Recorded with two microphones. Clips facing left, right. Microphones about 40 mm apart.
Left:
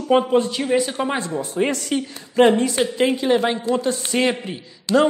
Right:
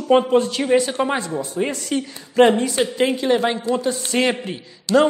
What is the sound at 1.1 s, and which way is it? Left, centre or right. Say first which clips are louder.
Speech: even; left.